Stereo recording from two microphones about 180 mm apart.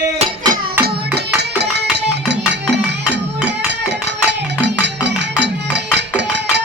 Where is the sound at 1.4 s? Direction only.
70° right (ahead or behind).